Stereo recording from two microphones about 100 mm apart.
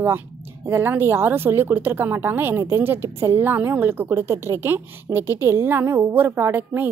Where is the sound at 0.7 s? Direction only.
25° right (ahead or behind).